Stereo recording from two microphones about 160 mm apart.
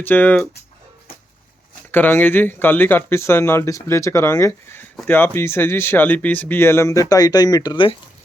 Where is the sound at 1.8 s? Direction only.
10° left (ahead or behind).